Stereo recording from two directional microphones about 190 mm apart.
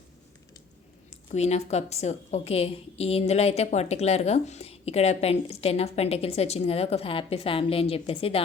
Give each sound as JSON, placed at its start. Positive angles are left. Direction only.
{"t": 1.3, "sound": "a woman's voice", "side_deg": 35}